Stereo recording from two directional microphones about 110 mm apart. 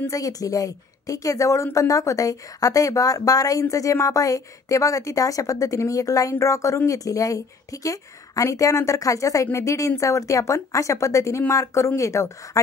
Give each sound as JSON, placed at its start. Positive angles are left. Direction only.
{"t": 0.1, "sound": "a woman's voice", "side_deg": 35}